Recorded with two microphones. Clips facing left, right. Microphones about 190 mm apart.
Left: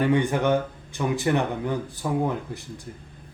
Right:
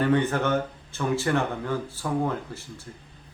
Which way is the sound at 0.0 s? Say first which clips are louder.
Left 1 dB; 15° left (ahead or behind).